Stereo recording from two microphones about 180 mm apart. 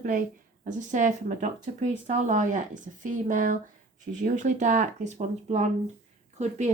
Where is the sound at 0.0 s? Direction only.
50° right (ahead or behind).